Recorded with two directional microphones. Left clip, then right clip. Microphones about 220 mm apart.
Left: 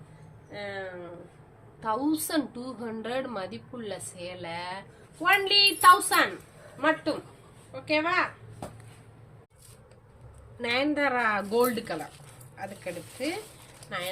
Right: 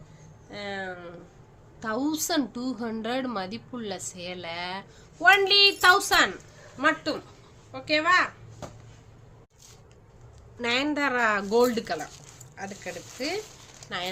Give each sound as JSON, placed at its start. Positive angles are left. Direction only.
{"t": 0.5, "sound": "a sound", "side_deg": -55}
{"t": 1.8, "sound": "a woman's voice", "side_deg": -55}
{"t": 7.7, "sound": "a woman's voice", "side_deg": -55}
{"t": 10.6, "sound": "a woman's voice", "side_deg": -55}